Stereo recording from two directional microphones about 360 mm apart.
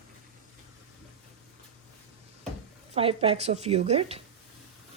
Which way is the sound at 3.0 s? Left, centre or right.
Centre.